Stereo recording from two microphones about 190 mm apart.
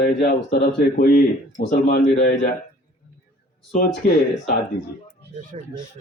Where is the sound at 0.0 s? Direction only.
50° left (ahead or behind).